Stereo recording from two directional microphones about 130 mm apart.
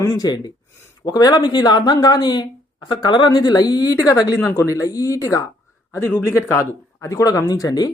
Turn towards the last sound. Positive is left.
turn(degrees=30)  # may be behind; listen again after turning